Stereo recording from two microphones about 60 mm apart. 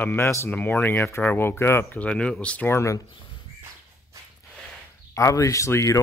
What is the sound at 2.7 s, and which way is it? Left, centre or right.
Speech, left.